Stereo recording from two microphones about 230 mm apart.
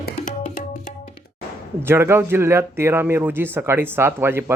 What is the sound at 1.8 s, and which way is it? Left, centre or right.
Speech, centre.